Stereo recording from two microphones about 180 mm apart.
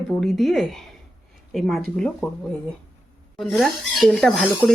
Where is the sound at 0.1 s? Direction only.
Centre (ahead or behind).